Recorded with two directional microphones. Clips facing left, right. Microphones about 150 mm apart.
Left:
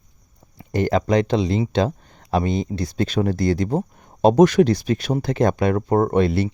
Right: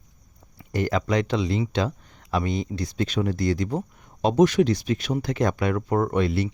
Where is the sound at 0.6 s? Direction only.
25° left (ahead or behind).